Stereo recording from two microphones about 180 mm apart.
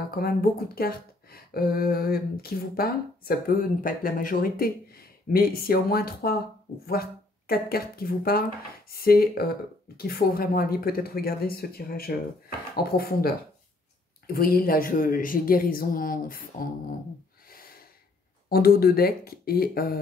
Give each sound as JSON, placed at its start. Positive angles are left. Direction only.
{"t": 0.1, "sound": "speech", "side_deg": 55}
{"t": 18.5, "sound": "speech", "side_deg": 55}